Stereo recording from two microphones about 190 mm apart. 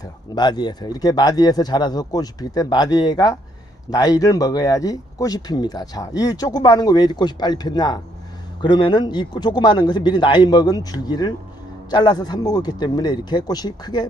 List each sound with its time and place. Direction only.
0.3 s speech: 20° left (ahead or behind)